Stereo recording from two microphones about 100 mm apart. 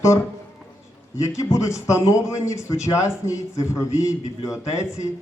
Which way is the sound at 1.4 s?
30° left (ahead or behind).